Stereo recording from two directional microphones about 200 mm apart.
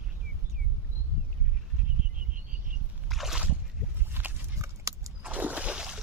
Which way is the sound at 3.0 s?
Centre (ahead or behind).